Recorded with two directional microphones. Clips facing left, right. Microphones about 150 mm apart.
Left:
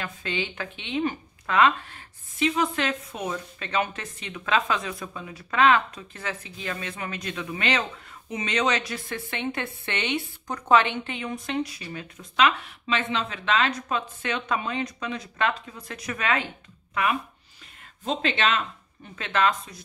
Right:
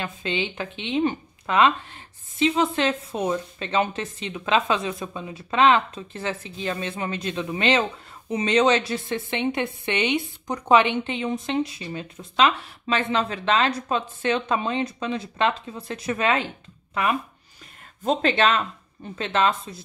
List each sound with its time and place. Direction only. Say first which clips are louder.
0.0 s a woman's voice: right 3 dB; 20° right (ahead or behind)
12.8 s a woman's voice: right 4 dB; 40° right (ahead or behind)
18.0 s speech: right 5 dB; 45° right (ahead or behind)
19.1 s a woman's voice: right 2 dB; 30° right (ahead or behind)